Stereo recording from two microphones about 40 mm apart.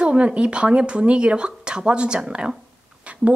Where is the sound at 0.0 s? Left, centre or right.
Right.